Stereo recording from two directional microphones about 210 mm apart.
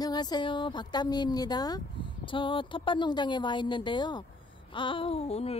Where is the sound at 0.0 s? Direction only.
20° left (ahead or behind).